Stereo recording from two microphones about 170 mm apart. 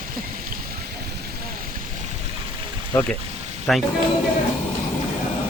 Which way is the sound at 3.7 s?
Centre (ahead or behind).